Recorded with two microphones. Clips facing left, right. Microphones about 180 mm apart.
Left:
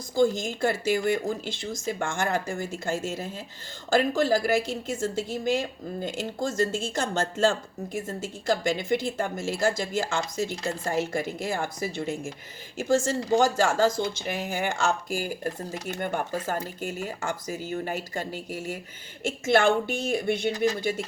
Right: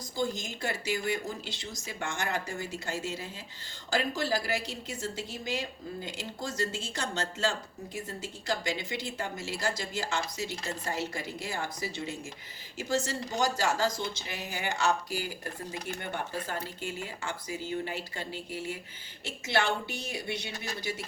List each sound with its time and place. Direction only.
0.2 s a woman's voice: 50° left (ahead or behind)